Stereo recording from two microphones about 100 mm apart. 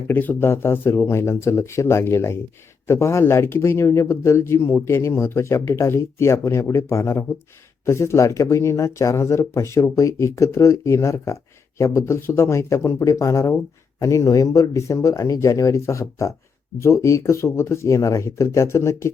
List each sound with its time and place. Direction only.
0.1 s speech: 20° left (ahead or behind)